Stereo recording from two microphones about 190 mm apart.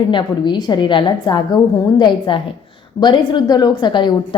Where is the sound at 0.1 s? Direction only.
25° left (ahead or behind).